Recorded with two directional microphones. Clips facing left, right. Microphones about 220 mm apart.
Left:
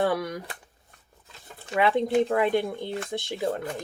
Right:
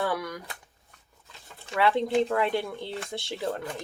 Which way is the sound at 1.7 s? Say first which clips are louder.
Left 2 dB; 15° left (ahead or behind).